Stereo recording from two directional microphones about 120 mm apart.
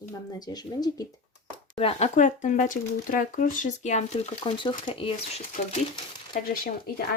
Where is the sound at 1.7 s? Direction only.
60° left (ahead or behind).